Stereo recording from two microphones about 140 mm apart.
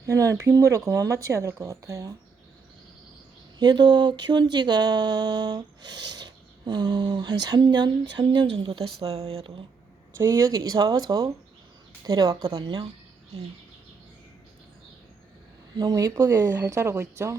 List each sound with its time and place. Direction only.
0.0 s speech: 25° right (ahead or behind)
3.6 s a sound: 30° right (ahead or behind)
10.2 s speech: 20° right (ahead or behind)
15.8 s speech: 25° right (ahead or behind)